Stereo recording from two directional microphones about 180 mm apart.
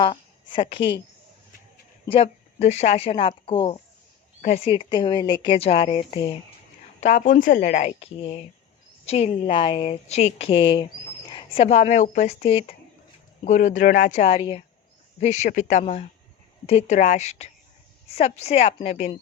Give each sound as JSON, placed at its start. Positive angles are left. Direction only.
{"t": 0.0, "sound": "a woman's voice", "side_deg": 25}
{"t": 2.0, "sound": "speech", "side_deg": 35}
{"t": 7.0, "sound": "speech", "side_deg": 45}
{"t": 13.4, "sound": "speech", "side_deg": 45}